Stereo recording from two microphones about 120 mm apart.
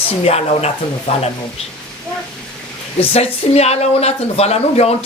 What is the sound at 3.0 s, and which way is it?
Speech, 60° left (ahead or behind).